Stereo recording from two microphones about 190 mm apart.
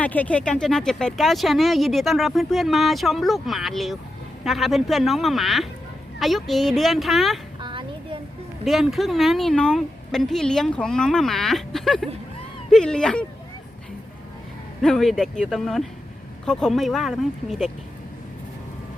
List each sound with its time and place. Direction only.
0.0 s speech: 10° left (ahead or behind)
7.6 s children playing: 25° right (ahead or behind)
8.6 s speech: centre (ahead or behind)
14.8 s speech: centre (ahead or behind)